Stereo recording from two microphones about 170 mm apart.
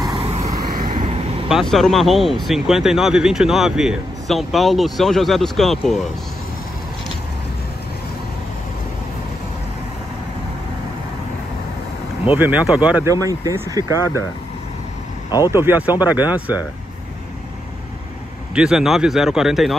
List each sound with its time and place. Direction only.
0.2 s vehicle: 35° right (ahead or behind)
0.5 s vehicle: 20° right (ahead or behind)
1.5 s speech: centre (ahead or behind)
12.3 s speech: 10° right (ahead or behind)
13.1 s speech: 20° right (ahead or behind)
15.5 s speech: 10° right (ahead or behind)
18.5 s speech: 5° right (ahead or behind)